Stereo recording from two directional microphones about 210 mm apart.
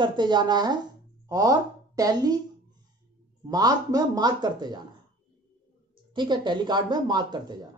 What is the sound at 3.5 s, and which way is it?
Speech, 20° right (ahead or behind).